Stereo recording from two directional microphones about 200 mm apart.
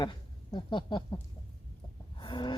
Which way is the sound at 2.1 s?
25° left (ahead or behind).